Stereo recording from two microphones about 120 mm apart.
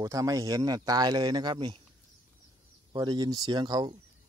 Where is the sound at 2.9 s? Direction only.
35° right (ahead or behind).